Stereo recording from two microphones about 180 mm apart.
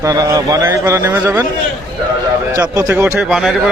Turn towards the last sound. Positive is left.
turn(degrees=0)  # may be behind; listen again after turning